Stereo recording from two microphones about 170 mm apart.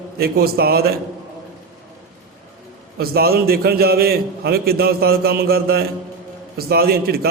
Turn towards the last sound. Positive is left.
turn(degrees=-65)  # may be behind; listen again after turning